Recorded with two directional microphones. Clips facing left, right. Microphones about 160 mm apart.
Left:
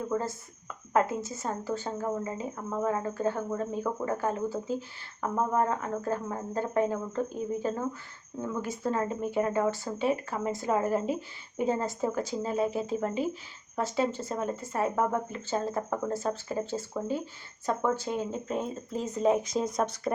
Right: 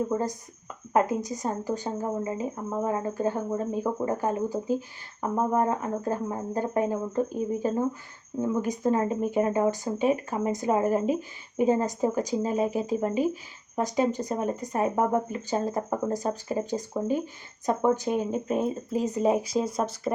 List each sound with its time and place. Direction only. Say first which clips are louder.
0.1 s speech: right 3 dB; 15° right (ahead or behind)